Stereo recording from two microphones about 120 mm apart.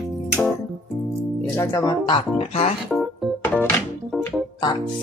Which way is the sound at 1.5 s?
30° left (ahead or behind).